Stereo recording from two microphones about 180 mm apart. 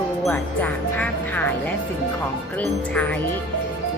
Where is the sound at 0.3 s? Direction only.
10° left (ahead or behind).